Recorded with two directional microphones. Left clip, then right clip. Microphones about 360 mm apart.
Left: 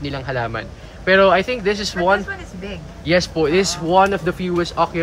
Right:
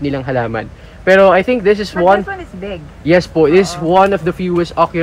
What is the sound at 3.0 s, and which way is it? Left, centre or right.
A man's voice, centre.